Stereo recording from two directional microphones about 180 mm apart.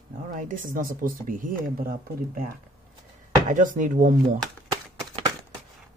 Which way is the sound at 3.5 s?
45° right (ahead or behind).